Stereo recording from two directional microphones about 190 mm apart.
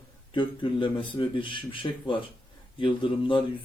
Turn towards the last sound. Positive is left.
turn(degrees=25)  # may be behind; listen again after turning